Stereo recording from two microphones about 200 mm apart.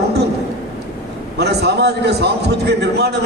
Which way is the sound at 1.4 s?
55° right (ahead or behind).